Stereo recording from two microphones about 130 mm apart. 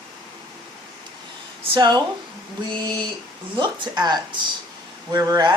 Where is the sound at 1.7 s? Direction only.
35° right (ahead or behind).